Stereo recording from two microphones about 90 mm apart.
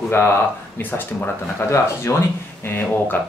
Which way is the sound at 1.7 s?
30° left (ahead or behind).